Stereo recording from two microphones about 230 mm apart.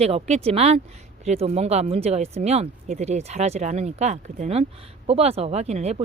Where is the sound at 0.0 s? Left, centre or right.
Right.